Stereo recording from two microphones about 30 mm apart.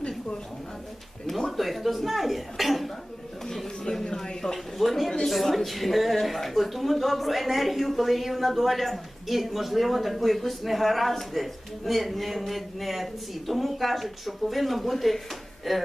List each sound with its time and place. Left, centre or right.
1.3 s a woman's voice: centre
3.9 s speech: left
4.5 s a sound: centre
5.2 s a woman's voice: centre